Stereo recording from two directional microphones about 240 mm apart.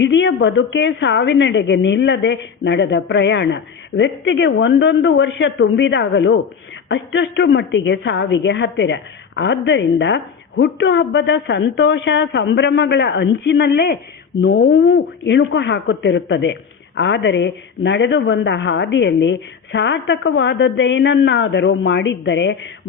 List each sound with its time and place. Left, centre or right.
0.0 s speech: left